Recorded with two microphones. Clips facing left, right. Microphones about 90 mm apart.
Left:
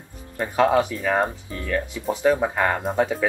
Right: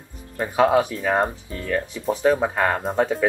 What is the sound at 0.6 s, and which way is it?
Speech, 15° right (ahead or behind).